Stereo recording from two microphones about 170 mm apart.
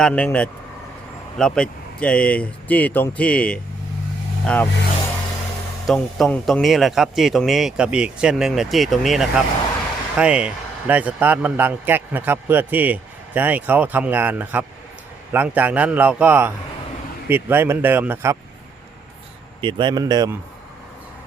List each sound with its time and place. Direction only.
0.0 s speech: 10° left (ahead or behind)
5.8 s a man's voice: centre (ahead or behind)
19.6 s a man's voice: 30° right (ahead or behind)